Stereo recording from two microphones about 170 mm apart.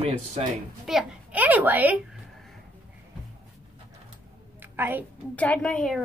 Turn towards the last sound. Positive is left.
turn(degrees=5)  # may be behind; listen again after turning